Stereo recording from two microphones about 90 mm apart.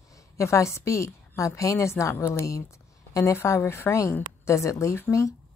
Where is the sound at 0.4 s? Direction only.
35° left (ahead or behind).